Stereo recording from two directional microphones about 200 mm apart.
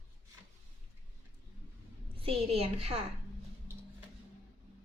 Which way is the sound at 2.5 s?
30° right (ahead or behind).